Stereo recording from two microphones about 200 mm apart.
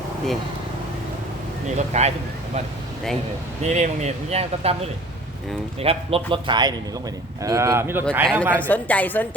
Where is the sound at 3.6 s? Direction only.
35° right (ahead or behind); by 8.0 s 10° right (ahead or behind).